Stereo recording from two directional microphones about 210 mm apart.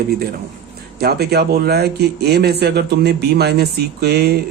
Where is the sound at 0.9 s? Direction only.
50° right (ahead or behind).